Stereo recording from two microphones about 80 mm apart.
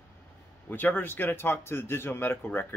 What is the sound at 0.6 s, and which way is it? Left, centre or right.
Speech, left.